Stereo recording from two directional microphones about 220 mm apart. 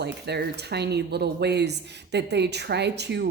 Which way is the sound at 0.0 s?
50° right (ahead or behind).